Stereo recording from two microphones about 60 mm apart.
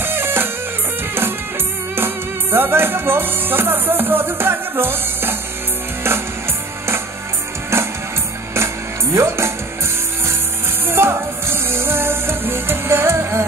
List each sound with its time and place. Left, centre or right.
0.0 s music: right
2.0 s music: right
7.7 s music: right
9.1 s speech: right
10.9 s music: right